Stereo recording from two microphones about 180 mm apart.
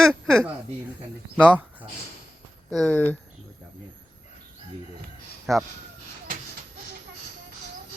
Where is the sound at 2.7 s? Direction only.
5° left (ahead or behind).